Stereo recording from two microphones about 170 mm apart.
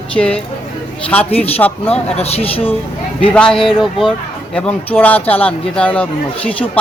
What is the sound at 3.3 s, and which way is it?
Speech, 5° left (ahead or behind).